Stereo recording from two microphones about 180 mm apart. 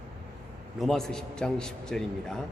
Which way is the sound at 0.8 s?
Centre (ahead or behind).